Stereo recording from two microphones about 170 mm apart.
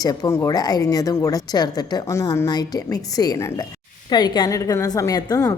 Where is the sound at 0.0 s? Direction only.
20° left (ahead or behind).